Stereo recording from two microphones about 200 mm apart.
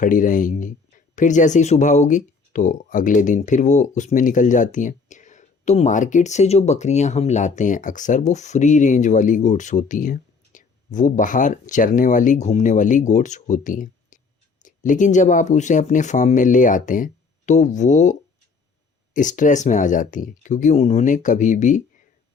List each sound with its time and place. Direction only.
0.0 s speech: 40° left (ahead or behind)